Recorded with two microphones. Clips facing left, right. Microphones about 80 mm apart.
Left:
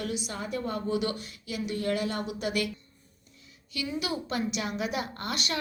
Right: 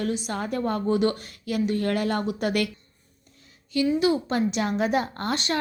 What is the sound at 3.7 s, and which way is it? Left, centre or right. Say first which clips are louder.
Speech: right 11 dB; right.